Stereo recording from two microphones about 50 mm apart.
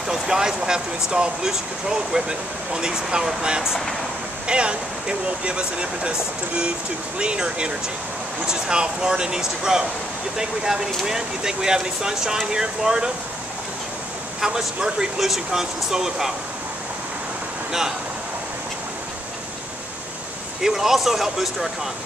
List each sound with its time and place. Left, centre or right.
0.1 s speech: centre
14.4 s speech: centre
20.6 s speech: centre